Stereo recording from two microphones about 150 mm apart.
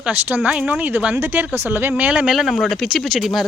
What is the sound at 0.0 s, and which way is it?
Speech, 10° right (ahead or behind).